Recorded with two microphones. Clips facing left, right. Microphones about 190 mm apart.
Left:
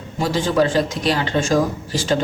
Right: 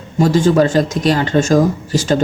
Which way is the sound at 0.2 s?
45° right (ahead or behind).